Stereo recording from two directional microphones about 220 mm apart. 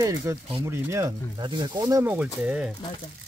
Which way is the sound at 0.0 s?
15° right (ahead or behind).